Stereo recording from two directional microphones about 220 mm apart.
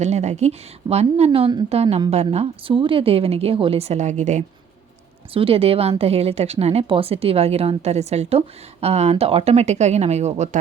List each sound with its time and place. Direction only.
0.0 s a woman's voice: 30° right (ahead or behind)